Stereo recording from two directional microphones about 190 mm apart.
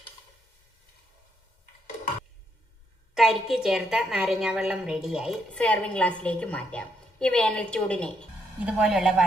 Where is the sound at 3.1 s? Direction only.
Centre (ahead or behind).